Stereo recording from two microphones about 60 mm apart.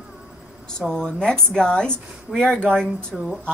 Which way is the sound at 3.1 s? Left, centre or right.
Centre.